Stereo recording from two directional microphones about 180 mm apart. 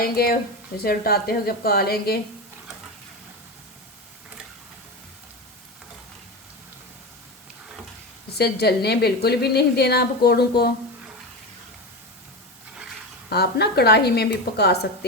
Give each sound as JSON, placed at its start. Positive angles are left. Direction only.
{"t": 0.0, "sound": "a woman's voice", "side_deg": 60}
{"t": 8.3, "sound": "a woman's voice", "side_deg": 60}
{"t": 13.3, "sound": "a woman's voice", "side_deg": 65}